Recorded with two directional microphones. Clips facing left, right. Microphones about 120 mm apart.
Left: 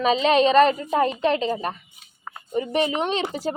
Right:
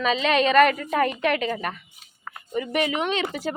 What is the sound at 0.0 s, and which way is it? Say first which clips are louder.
A woman's voice: left 3 dB; 35° left (ahead or behind).